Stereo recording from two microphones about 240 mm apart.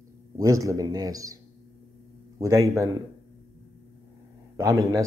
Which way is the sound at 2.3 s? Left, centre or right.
Centre.